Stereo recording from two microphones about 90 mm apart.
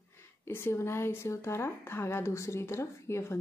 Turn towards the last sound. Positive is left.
turn(degrees=30)  # may be behind; listen again after turning